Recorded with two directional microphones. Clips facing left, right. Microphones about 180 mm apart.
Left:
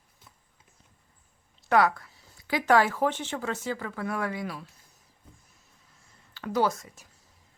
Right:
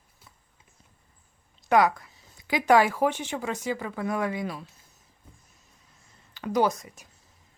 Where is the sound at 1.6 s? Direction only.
15° right (ahead or behind).